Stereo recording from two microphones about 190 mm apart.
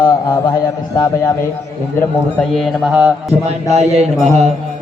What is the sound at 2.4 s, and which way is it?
Mantra, centre (ahead or behind).